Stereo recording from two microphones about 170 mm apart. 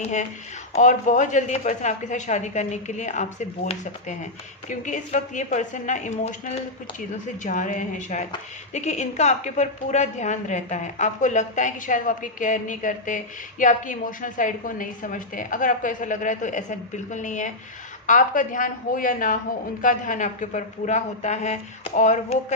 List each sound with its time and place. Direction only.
0.0 s a woman's voice: 45° left (ahead or behind)